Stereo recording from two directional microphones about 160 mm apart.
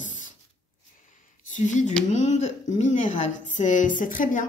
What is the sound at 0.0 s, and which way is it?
Spray, 50° left (ahead or behind).